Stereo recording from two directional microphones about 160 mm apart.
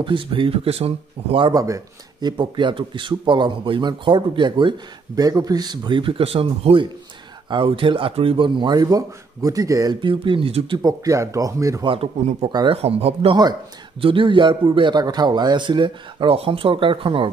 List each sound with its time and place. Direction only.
0.0 s a man's voice: 30° right (ahead or behind)
9.9 s a man's voice: 30° right (ahead or behind)
11.8 s speech: 35° right (ahead or behind)
12.4 s speech: 30° right (ahead or behind)